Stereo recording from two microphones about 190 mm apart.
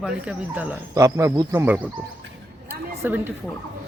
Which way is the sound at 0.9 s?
15° right (ahead or behind).